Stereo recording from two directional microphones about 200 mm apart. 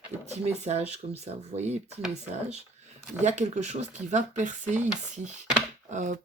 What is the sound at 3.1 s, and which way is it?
Speech, 35° right (ahead or behind).